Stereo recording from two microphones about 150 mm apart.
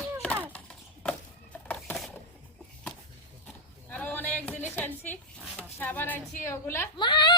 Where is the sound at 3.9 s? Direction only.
10° left (ahead or behind).